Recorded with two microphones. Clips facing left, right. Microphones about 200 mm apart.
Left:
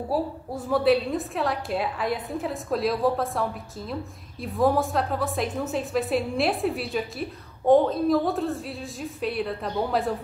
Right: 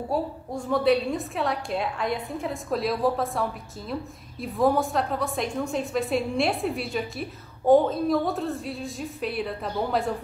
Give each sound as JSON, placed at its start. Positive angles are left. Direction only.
{"t": 0.1, "sound": "a woman's voice", "side_deg": 5}